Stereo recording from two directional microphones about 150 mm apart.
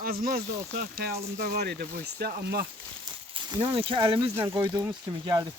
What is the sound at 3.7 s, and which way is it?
Speech, 35° right (ahead or behind).